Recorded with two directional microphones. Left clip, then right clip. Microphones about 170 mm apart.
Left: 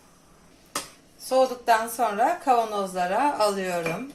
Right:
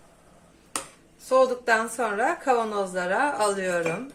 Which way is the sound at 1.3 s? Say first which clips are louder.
Even; 25° right (ahead or behind).